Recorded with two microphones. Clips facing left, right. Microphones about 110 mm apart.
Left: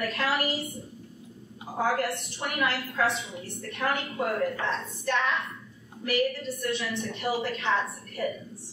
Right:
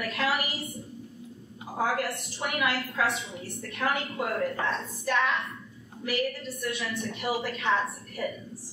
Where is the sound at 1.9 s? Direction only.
Centre (ahead or behind).